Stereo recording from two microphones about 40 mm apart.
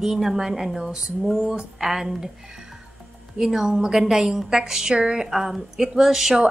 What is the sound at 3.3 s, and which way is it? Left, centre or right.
Speech, centre.